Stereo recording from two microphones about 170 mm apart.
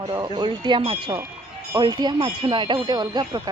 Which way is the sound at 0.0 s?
25° right (ahead or behind).